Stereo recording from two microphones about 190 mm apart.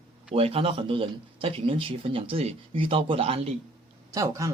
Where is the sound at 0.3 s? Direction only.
30° right (ahead or behind).